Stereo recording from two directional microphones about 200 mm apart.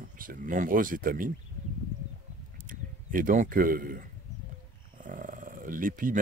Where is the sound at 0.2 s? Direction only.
45° right (ahead or behind).